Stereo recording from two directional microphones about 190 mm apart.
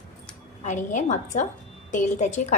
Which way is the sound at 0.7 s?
40° left (ahead or behind).